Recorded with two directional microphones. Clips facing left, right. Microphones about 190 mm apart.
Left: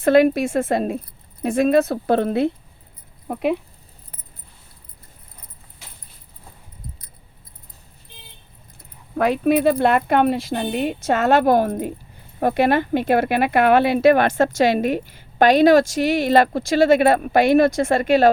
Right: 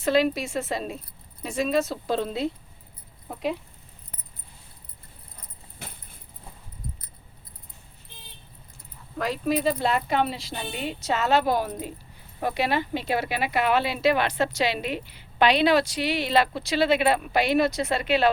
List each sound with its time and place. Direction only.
0.0 s speech: 55° left (ahead or behind)
5.8 s keys jangling: 55° right (ahead or behind)
9.1 s speech: 60° left (ahead or behind)